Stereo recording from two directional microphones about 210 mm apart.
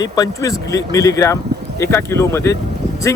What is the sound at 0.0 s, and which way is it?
Speech, 15° left (ahead or behind).